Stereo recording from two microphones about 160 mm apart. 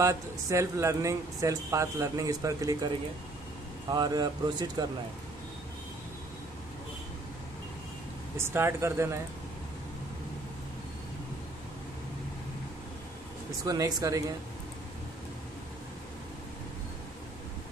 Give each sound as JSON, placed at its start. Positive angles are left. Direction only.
{"t": 0.0, "sound": "speech", "side_deg": -20}
{"t": 3.9, "sound": "speech", "side_deg": -25}
{"t": 8.4, "sound": "speech", "side_deg": -15}
{"t": 13.7, "sound": "speech", "side_deg": -20}